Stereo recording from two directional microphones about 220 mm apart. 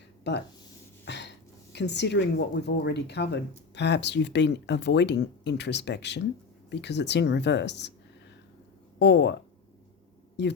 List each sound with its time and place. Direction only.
0.3 s speech: 50° left (ahead or behind)
1.0 s a sound: 50° left (ahead or behind)
2.6 s speech: 50° left (ahead or behind)
9.0 s speech: 50° left (ahead or behind)
10.4 s speech: 50° left (ahead or behind)